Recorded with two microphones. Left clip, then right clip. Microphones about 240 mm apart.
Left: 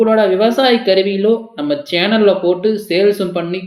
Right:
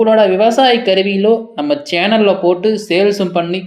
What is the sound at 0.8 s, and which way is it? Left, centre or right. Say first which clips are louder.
Speech: even; centre.